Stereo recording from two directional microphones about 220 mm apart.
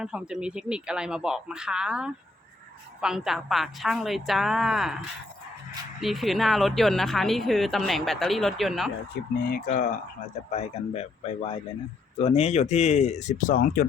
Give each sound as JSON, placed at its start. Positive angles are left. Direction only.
{"t": 0.0, "sound": "speech", "side_deg": -5}
{"t": 6.0, "sound": "speech", "side_deg": 0}
{"t": 9.4, "sound": "speech", "side_deg": 40}